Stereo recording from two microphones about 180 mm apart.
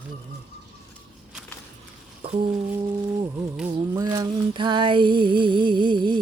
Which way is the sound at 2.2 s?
30° right (ahead or behind).